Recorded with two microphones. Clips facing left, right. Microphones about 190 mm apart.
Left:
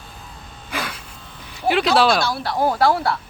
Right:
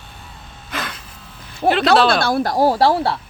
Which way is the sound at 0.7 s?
10° left (ahead or behind).